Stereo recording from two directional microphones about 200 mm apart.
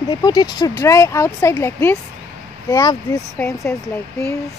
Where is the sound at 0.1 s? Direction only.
20° left (ahead or behind).